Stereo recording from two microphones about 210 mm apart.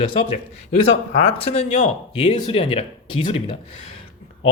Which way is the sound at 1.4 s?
30° left (ahead or behind).